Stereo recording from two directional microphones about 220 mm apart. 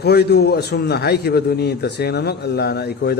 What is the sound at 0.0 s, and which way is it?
A man's voice, 45° left (ahead or behind).